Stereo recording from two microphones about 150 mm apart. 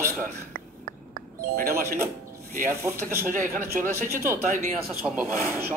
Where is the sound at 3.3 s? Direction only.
65° right (ahead or behind).